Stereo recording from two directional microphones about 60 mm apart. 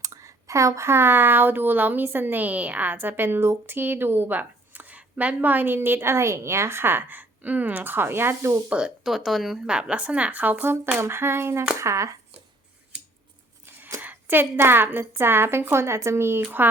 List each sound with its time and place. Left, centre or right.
0.0 s a sound: right
0.9 s speech: right
9.0 s speech: centre
9.6 s a woman's voice: centre; by 11.6 s right
11.8 s speech: right
13.7 s a sound: right
14.0 s speech: right